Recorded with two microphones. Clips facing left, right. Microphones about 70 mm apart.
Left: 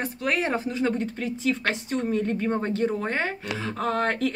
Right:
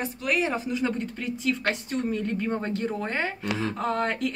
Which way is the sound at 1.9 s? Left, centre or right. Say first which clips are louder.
Left 2 dB; left.